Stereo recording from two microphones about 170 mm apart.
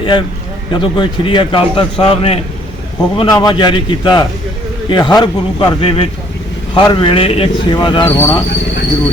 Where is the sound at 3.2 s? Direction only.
25° left (ahead or behind).